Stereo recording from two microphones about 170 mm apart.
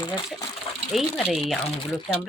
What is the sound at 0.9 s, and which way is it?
Speech, centre (ahead or behind).